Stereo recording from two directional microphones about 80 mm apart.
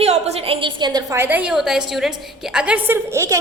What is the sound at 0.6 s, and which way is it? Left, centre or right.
Speech, right.